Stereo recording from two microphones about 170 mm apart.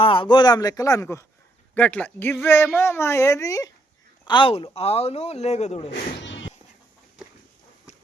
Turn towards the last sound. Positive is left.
turn(degrees=90)